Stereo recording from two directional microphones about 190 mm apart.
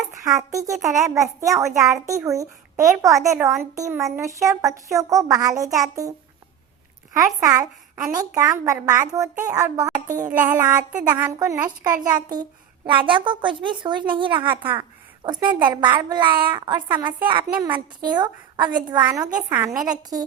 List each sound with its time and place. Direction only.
0.2 s a child's voice: 15° right (ahead or behind)
7.3 s a child's voice: 20° right (ahead or behind)